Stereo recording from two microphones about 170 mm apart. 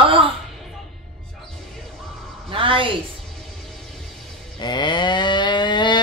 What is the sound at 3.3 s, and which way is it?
Music, centre (ahead or behind).